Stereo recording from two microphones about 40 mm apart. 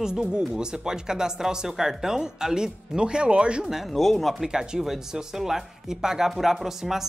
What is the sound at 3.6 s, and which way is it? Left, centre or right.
Speech, centre.